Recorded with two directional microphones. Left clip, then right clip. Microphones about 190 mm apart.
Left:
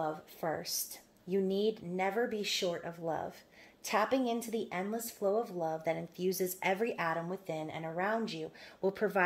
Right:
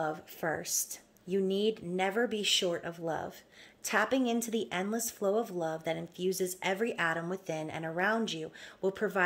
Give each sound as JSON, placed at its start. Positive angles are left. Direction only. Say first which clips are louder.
{"t": 0.0, "sound": "a woman's voice", "louder": "right 2 dB", "side_deg": -25}
{"t": 8.8, "sound": "speech", "louder": "even", "side_deg": -5}